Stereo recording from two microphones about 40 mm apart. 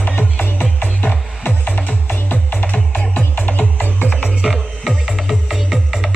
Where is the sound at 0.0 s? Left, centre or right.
Left.